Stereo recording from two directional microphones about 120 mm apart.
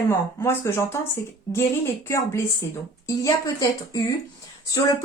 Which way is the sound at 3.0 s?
30° left (ahead or behind).